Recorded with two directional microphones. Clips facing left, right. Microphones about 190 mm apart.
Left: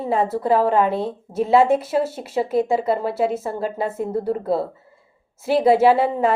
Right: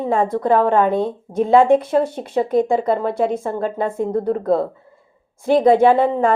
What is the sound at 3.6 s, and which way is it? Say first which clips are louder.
Speech: right 3 dB; 5° left (ahead or behind).